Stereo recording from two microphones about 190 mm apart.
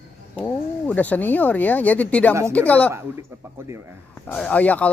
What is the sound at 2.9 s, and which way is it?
Speech, 15° right (ahead or behind).